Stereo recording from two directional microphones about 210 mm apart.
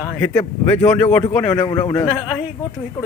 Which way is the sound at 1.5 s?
25° left (ahead or behind).